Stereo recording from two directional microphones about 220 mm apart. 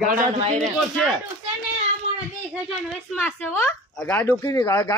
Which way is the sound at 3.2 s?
10° left (ahead or behind).